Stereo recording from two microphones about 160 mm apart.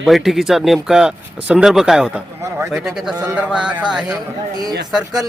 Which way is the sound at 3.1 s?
25° right (ahead or behind).